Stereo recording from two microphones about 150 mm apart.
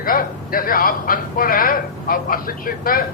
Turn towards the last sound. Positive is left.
turn(degrees=70)  # may be behind; listen again after turning